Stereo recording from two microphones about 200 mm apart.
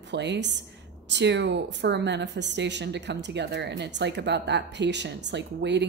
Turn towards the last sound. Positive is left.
turn(degrees=-60)  # may be behind; listen again after turning